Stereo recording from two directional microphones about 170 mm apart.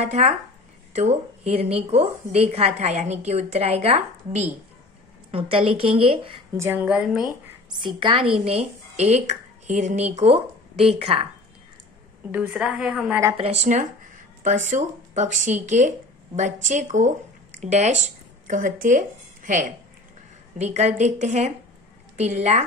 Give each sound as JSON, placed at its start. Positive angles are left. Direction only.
{"t": 0.0, "sound": "a woman's voice", "side_deg": -40}
{"t": 6.5, "sound": "a woman's voice", "side_deg": -15}
{"t": 7.7, "sound": "a woman's voice", "side_deg": -30}
{"t": 12.3, "sound": "a woman's voice", "side_deg": -10}
{"t": 13.4, "sound": "a woman's voice", "side_deg": -40}